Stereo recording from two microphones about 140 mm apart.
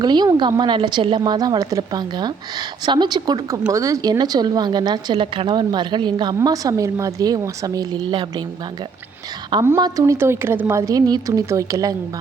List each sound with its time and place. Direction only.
0.0 s a woman's voice: 30° right (ahead or behind)
9.6 s a woman's voice: 25° right (ahead or behind)